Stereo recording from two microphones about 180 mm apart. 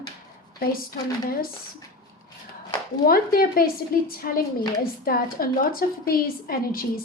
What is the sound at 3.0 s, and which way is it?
A woman's voice, 55° left (ahead or behind).